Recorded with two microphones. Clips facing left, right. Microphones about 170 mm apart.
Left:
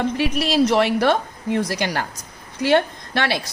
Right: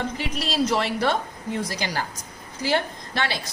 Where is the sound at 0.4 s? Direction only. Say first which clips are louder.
Left 6 dB; 65° left (ahead or behind).